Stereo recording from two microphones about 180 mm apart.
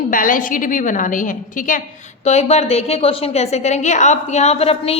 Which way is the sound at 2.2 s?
35° left (ahead or behind).